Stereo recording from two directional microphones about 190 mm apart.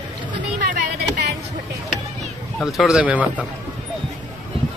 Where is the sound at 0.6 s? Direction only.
40° right (ahead or behind).